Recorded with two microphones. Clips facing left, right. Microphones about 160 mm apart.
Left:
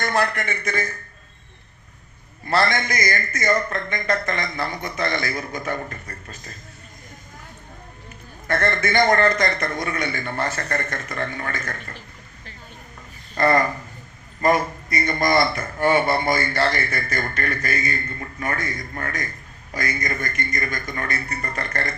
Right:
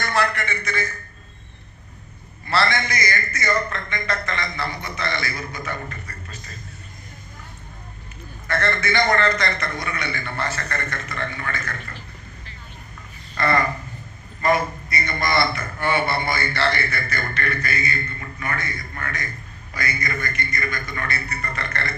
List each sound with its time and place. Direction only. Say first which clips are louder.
0.0 s a man's voice: left 1 dB; 50° left (ahead or behind)
2.5 s a man's voice: left 1 dB; 45° left (ahead or behind)
8.4 s a man's voice: left 2 dB; 50° left (ahead or behind)
13.3 s speech: left 3 dB; 40° left (ahead or behind)